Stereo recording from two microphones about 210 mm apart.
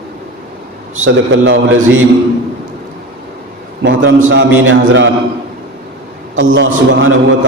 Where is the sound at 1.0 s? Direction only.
65° right (ahead or behind).